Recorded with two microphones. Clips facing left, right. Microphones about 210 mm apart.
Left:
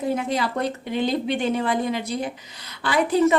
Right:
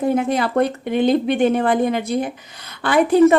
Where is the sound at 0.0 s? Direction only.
55° right (ahead or behind).